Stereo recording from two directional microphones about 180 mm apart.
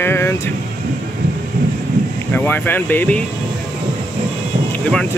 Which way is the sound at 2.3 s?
10° left (ahead or behind).